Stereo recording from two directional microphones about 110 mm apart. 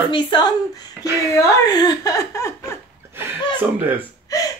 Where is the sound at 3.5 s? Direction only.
15° right (ahead or behind).